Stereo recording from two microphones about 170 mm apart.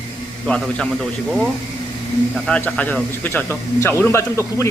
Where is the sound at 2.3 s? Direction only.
5° left (ahead or behind).